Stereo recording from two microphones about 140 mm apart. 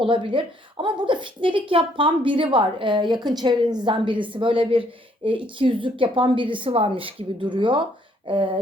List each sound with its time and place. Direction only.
0.0 s a woman's voice: 35° right (ahead or behind)